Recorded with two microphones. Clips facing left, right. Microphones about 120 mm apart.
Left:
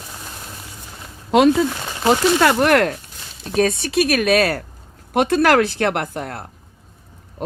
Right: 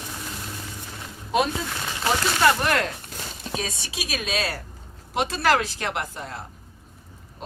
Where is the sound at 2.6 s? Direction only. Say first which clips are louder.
Left 9 dB; 55° left (ahead or behind).